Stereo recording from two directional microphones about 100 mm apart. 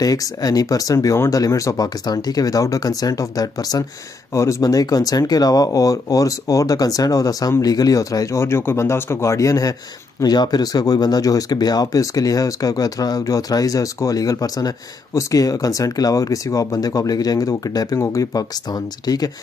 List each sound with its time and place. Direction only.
0.0 s speech: 40° left (ahead or behind)